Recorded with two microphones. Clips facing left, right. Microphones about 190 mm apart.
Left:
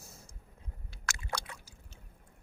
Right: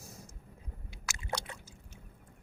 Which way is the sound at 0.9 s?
10° right (ahead or behind).